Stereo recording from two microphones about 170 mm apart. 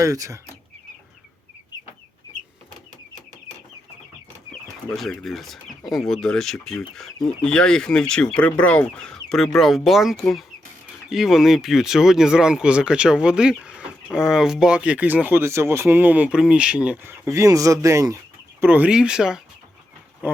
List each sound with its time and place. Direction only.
0.0 s speech: 20° right (ahead or behind)
4.9 s speech: centre (ahead or behind)